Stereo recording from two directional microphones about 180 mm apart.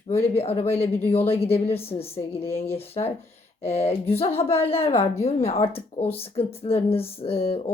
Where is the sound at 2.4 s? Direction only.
15° left (ahead or behind).